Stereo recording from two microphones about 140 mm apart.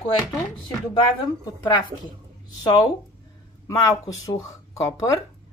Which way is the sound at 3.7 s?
25° left (ahead or behind).